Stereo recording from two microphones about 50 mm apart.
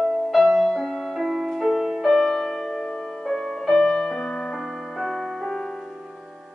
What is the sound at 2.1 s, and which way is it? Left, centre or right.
Music, centre.